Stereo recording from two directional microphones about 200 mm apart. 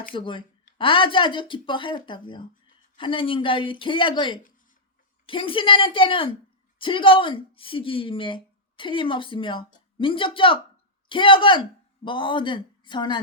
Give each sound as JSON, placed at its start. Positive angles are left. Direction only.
{"t": 0.1, "sound": "a woman's voice", "side_deg": 25}